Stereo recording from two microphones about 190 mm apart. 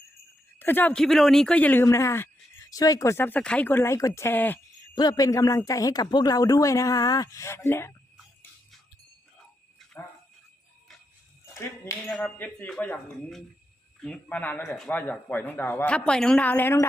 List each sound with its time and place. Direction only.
0.6 s speech: 10° left (ahead or behind)
11.5 s speech: 15° left (ahead or behind)